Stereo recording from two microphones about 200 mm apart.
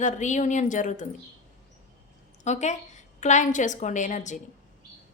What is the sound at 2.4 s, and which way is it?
A woman's voice, 35° left (ahead or behind).